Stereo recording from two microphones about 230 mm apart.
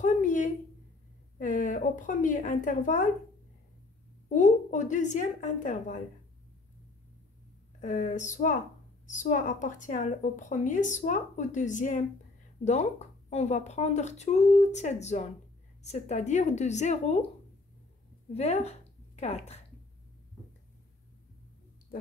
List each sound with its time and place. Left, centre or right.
0.0 s a sound: left
1.4 s a woman's voice: left
4.3 s a woman's voice: left
7.8 s a woman's voice: left
18.3 s a woman's voice: left